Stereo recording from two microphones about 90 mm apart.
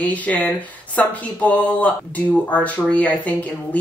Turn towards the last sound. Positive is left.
turn(degrees=15)  # may be behind; listen again after turning